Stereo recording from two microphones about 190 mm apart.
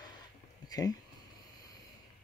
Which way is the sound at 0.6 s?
20° left (ahead or behind).